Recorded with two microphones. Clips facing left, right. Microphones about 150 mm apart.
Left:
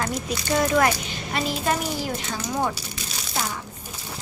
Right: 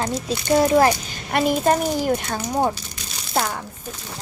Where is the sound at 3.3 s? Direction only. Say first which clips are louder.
Right 7 dB; 55° right (ahead or behind).